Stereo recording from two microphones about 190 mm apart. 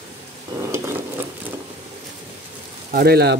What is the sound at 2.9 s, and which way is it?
Speech, 55° right (ahead or behind).